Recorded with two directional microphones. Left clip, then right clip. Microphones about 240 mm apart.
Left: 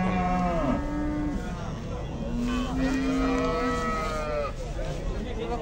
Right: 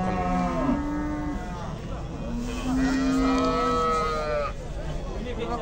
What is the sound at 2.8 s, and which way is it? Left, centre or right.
Cattle, right.